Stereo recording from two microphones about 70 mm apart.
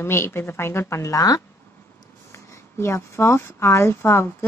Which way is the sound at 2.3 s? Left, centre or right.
Left.